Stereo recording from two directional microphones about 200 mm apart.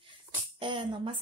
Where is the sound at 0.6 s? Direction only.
25° right (ahead or behind).